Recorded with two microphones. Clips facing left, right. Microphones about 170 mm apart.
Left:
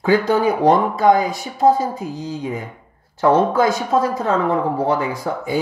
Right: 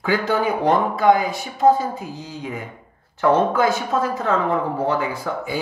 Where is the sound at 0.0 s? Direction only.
40° left (ahead or behind).